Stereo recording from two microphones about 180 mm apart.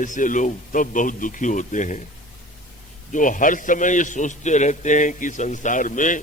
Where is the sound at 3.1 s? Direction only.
45° left (ahead or behind).